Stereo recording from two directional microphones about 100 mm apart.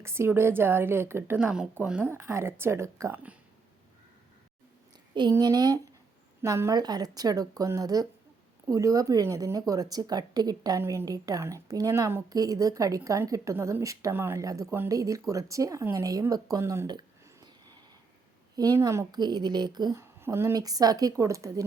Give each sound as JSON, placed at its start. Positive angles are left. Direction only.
{"t": 0.0, "sound": "a woman's voice", "side_deg": -25}
{"t": 1.4, "sound": "speech", "side_deg": -10}
{"t": 2.0, "sound": "a woman's voice", "side_deg": -25}
{"t": 5.3, "sound": "a woman's voice", "side_deg": -40}
{"t": 16.8, "sound": "speech", "side_deg": -45}
{"t": 18.5, "sound": "a woman's voice", "side_deg": -35}
{"t": 19.1, "sound": "speech", "side_deg": -45}
{"t": 20.0, "sound": "a woman's voice", "side_deg": -25}